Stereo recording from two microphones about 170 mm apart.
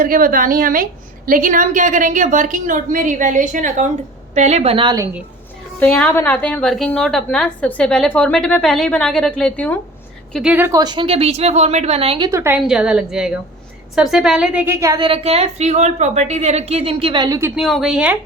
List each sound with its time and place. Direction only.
0.0 s a woman's voice: 55° right (ahead or behind); by 4.9 s 30° right (ahead or behind)
5.8 s a woman's voice: 10° left (ahead or behind)
10.3 s a woman's voice: 5° right (ahead or behind)
10.7 s a woman's voice: 25° right (ahead or behind)
12.3 s a woman's voice: 15° right (ahead or behind)
17.5 s a woman's voice: centre (ahead or behind)